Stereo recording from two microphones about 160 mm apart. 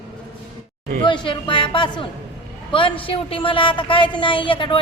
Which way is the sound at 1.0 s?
30° left (ahead or behind).